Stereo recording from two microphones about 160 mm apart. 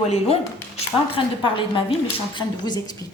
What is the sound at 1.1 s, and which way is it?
A woman's voice, 30° left (ahead or behind).